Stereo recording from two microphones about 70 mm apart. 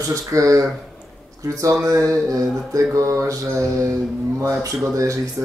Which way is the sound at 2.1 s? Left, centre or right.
Right.